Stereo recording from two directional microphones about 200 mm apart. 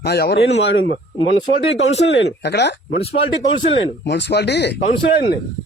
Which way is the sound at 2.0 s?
60° left (ahead or behind).